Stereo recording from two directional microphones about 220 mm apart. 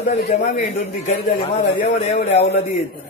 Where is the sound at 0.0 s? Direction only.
30° left (ahead or behind).